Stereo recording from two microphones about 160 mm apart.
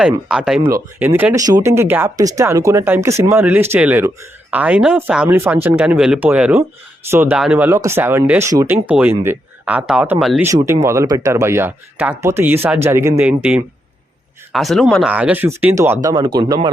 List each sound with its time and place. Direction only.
0.0 s speech: 5° right (ahead or behind)
10.8 s speech: 20° right (ahead or behind); by 15.1 s centre (ahead or behind)
15.1 s speech: 10° right (ahead or behind); by 16.6 s 25° right (ahead or behind)